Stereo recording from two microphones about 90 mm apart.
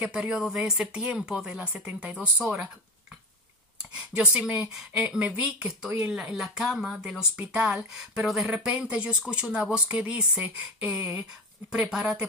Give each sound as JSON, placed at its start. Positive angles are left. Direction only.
{"t": 0.0, "sound": "speech", "side_deg": -15}
{"t": 3.9, "sound": "speech", "side_deg": -15}
{"t": 11.9, "sound": "speech", "side_deg": -10}